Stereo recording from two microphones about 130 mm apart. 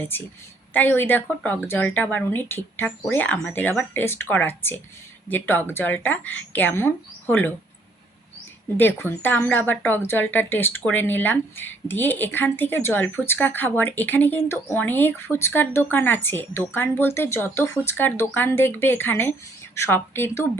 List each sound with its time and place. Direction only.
0.7 s speech: 15° left (ahead or behind)
8.8 s speech: 15° left (ahead or behind)